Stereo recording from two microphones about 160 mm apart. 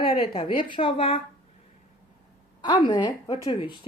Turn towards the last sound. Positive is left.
turn(degrees=25)  # may be behind; listen again after turning